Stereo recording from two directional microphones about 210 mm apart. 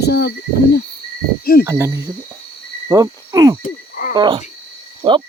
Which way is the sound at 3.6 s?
40° left (ahead or behind).